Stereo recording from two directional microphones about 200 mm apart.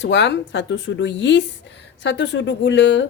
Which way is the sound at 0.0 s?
60° left (ahead or behind).